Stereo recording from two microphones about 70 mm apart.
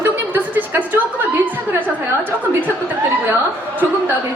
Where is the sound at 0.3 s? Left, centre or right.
Right.